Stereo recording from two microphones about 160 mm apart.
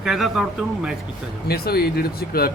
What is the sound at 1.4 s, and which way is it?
Speech, 75° left (ahead or behind).